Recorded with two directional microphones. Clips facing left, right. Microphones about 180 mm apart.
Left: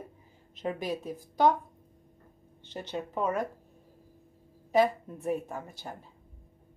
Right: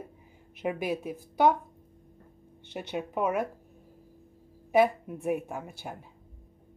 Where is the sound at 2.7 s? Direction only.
10° right (ahead or behind).